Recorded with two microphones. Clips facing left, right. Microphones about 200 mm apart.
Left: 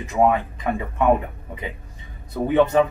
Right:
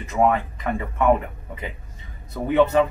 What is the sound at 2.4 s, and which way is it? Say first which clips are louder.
Speech: left 1 dB; 15° left (ahead or behind).